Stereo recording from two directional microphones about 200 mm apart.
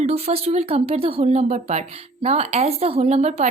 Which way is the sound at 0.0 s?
30° right (ahead or behind).